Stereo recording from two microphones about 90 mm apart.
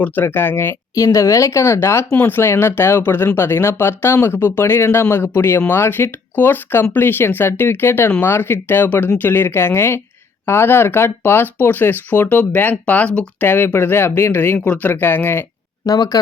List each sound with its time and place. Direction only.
0.0 s speech: 25° left (ahead or behind)
0.9 s speech: 40° left (ahead or behind)
15.9 s speech: 45° left (ahead or behind)